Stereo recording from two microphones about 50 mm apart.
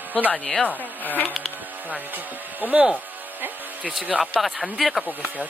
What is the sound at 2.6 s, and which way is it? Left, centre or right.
Speech, right.